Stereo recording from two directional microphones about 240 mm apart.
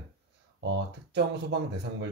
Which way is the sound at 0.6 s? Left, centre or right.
Right.